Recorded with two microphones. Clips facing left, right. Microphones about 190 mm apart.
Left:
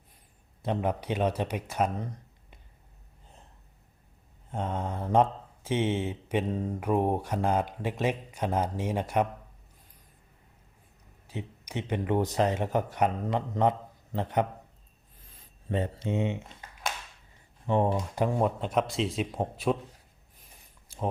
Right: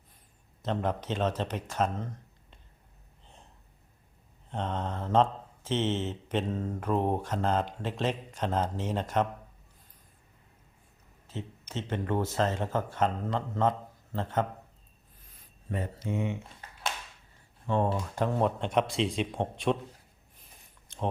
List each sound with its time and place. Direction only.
0.6 s speech: 10° left (ahead or behind)
4.4 s mantra: 10° left (ahead or behind)
11.3 s mantra: 15° left (ahead or behind)
15.7 s speech: 25° left (ahead or behind)
17.7 s speech: 15° left (ahead or behind)
20.8 s a sound: 5° left (ahead or behind)